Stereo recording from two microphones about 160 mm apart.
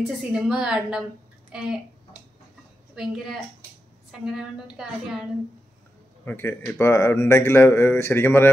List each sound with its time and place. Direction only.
0.1 s a woman's voice: 5° right (ahead or behind)
3.0 s a woman's voice: 5° right (ahead or behind)
6.2 s a man's voice: 15° left (ahead or behind)